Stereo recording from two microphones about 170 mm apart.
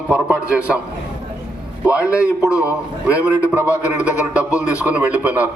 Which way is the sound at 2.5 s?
20° left (ahead or behind).